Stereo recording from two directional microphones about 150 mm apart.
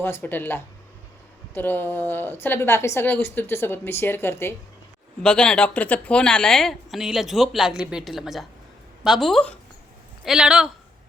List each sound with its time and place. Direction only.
0.0 s a woman's voice: 15° left (ahead or behind)
5.2 s a woman's voice: 5° left (ahead or behind)